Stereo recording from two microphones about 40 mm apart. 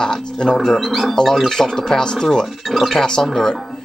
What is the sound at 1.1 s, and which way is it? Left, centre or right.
Speech, centre.